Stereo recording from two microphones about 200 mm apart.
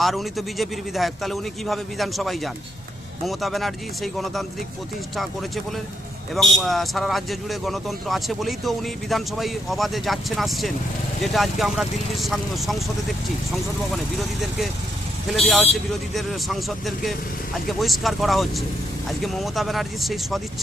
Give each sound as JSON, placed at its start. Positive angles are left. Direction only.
{"t": 0.0, "sound": "a man's voice", "side_deg": 0}